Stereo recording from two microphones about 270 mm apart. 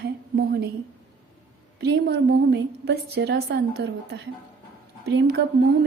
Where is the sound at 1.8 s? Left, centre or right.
Right.